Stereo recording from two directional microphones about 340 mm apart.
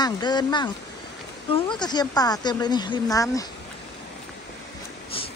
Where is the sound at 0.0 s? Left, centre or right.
Centre.